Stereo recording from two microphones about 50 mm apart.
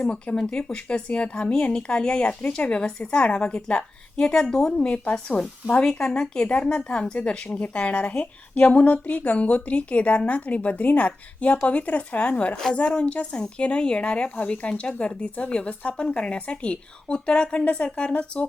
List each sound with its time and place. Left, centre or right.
0.0 s speech: centre